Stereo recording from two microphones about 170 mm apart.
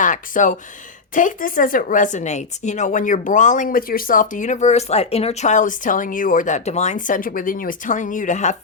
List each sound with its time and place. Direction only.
0.0 s speech: 50° left (ahead or behind)